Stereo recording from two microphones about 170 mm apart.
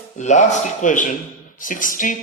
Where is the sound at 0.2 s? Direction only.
45° left (ahead or behind).